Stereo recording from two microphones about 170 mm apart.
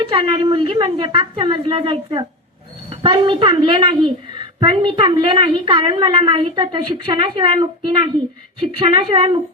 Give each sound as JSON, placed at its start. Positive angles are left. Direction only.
{"t": 0.0, "sound": "a woman's voice", "side_deg": -30}